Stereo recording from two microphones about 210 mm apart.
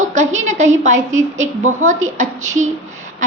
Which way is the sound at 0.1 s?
35° right (ahead or behind).